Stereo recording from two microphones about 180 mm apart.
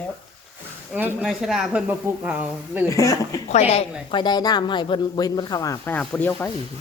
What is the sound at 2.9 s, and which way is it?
Speech, 20° left (ahead or behind).